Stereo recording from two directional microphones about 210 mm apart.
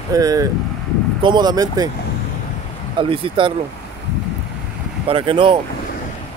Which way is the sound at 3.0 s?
25° right (ahead or behind).